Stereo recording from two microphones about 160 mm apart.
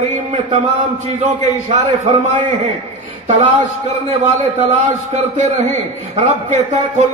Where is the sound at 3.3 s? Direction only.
45° right (ahead or behind).